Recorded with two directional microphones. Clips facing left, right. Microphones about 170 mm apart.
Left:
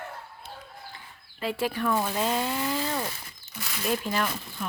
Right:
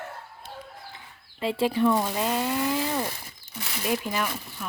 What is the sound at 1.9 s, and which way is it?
Speech, 10° right (ahead or behind).